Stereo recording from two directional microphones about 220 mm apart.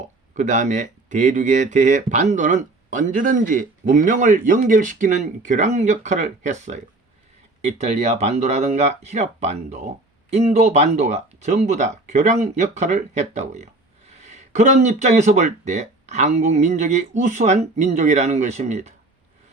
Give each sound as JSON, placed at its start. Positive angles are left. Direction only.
{"t": 0.3, "sound": "speech", "side_deg": -35}